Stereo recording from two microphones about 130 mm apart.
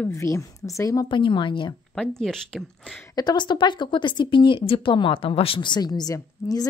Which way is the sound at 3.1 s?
35° left (ahead or behind).